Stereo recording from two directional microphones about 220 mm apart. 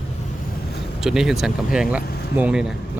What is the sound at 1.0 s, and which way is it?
Speech, centre (ahead or behind).